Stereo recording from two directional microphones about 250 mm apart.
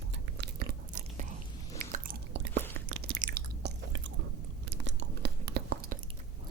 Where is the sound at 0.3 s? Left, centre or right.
Right.